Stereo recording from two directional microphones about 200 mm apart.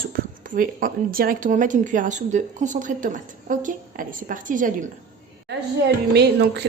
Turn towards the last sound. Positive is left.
turn(degrees=-55)  # may be behind; listen again after turning